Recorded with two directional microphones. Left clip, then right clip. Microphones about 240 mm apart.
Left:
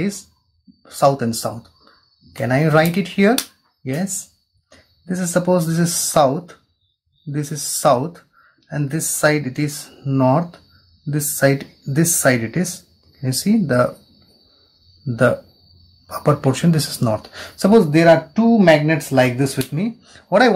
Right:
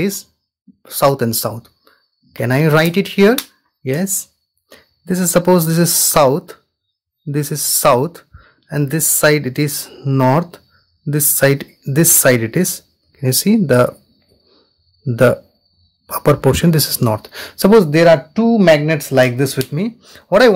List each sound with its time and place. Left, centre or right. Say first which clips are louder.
0.0 s speech: right 5 dB; right
16.1 s speech: right 5 dB; right